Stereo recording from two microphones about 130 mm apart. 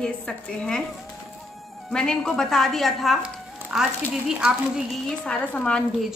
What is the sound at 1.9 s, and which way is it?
Speech, 5° left (ahead or behind).